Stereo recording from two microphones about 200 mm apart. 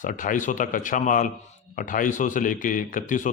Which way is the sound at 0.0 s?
40° left (ahead or behind).